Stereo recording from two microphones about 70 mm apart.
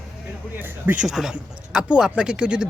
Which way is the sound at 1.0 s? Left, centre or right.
Centre.